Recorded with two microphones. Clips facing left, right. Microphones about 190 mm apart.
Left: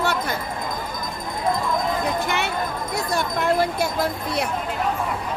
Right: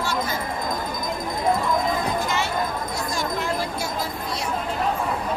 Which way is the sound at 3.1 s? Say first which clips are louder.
Left 5 dB; 60° left (ahead or behind).